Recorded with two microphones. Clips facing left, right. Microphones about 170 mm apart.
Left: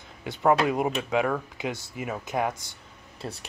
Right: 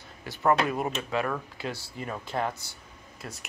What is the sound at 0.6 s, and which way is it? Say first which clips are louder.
Speech: left 4 dB; 20° left (ahead or behind).